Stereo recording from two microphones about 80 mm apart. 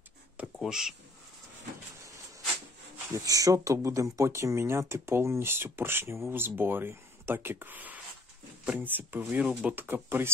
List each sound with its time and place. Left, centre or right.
0.6 s speech: centre
3.1 s speech: right